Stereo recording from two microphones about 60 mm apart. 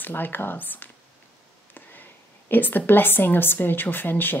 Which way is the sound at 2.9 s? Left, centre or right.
Left.